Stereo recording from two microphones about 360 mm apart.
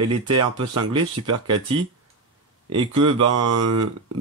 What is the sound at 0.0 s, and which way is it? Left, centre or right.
Speech, right.